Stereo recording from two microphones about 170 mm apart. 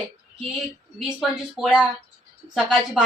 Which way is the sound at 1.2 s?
Centre (ahead or behind).